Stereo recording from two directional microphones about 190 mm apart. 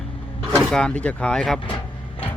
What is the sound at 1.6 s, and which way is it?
Vehicle, 30° left (ahead or behind).